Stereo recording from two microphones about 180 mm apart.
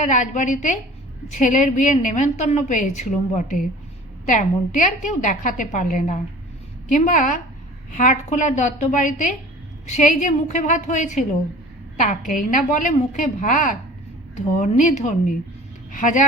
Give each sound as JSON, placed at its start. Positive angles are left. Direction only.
{"t": 0.0, "sound": "a woman's voice", "side_deg": 45}